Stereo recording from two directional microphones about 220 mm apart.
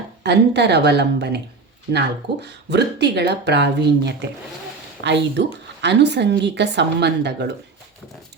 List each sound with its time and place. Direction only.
0.2 s a woman's voice: 50° right (ahead or behind)